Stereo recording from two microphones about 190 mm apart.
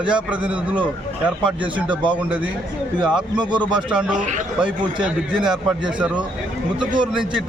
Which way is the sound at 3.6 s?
5° right (ahead or behind).